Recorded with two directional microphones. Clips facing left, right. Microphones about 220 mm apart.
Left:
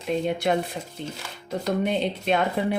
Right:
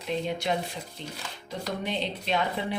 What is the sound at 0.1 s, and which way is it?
A woman's voice, 55° left (ahead or behind).